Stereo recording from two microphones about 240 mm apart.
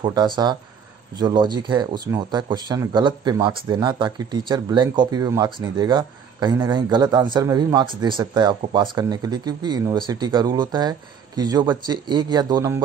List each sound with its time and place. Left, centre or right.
0.0 s speech: centre